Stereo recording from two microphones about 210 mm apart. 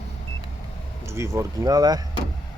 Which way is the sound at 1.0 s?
15° right (ahead or behind).